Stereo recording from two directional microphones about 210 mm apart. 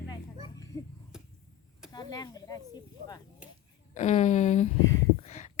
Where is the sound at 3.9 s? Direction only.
35° left (ahead or behind).